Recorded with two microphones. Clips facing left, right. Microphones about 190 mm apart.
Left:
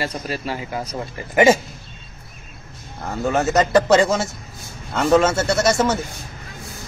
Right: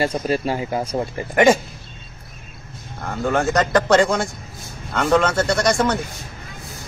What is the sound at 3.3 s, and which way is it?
Speech, 5° left (ahead or behind).